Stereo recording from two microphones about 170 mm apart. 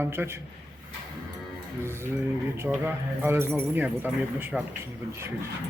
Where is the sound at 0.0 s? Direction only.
15° right (ahead or behind).